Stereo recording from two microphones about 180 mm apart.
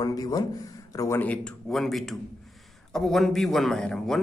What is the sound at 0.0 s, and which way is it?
A man's voice, 20° left (ahead or behind).